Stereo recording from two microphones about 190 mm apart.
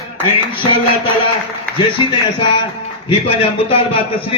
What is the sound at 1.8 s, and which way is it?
A man's voice, 25° left (ahead or behind).